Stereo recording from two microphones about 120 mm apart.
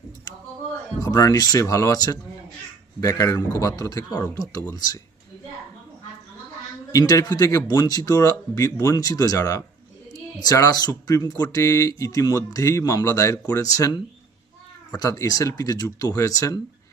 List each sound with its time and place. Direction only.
0.9 s speech: 30° left (ahead or behind)
6.9 s speech: 30° left (ahead or behind)
14.9 s speech: 30° left (ahead or behind)